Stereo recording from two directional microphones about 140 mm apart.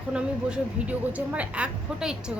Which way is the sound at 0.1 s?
5° right (ahead or behind).